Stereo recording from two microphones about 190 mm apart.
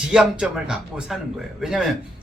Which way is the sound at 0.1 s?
5° right (ahead or behind).